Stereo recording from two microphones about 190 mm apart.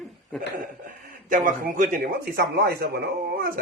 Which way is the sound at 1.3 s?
45° right (ahead or behind).